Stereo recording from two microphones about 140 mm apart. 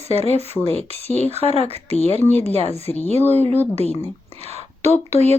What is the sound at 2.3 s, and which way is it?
Speech, 50° right (ahead or behind).